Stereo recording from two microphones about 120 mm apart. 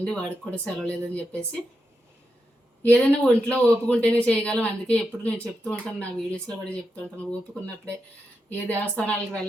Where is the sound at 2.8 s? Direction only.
15° left (ahead or behind).